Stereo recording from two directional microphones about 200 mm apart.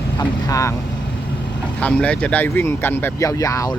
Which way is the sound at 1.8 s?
5° left (ahead or behind).